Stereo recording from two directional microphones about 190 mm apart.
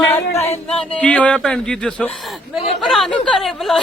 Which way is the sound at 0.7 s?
5° left (ahead or behind).